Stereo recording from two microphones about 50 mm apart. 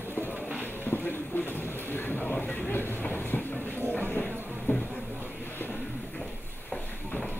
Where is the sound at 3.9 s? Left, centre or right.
Left.